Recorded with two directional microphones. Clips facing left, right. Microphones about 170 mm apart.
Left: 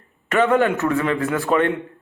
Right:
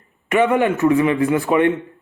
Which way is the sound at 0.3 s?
10° right (ahead or behind).